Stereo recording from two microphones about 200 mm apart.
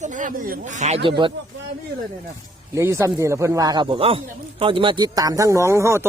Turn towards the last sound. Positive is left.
turn(degrees=-15)  # may be behind; listen again after turning